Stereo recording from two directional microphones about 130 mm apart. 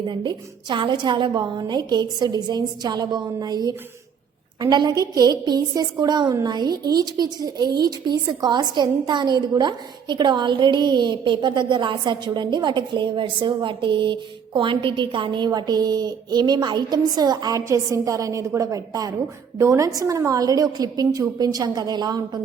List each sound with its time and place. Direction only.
0.0 s a woman's voice: 35° right (ahead or behind)